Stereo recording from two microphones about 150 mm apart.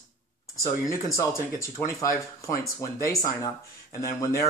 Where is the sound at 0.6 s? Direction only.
20° left (ahead or behind).